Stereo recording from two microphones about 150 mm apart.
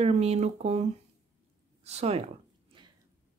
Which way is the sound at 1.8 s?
45° right (ahead or behind).